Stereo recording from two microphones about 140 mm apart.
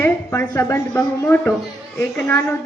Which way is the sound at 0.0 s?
20° left (ahead or behind).